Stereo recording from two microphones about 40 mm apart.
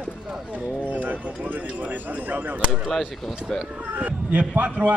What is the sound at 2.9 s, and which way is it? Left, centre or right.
Speech, centre.